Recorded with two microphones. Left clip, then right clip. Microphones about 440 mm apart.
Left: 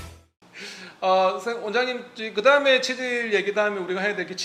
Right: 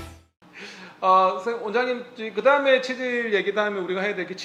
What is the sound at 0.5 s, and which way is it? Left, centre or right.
Speech, centre.